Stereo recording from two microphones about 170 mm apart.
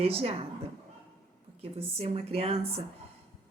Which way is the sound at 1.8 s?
35° right (ahead or behind).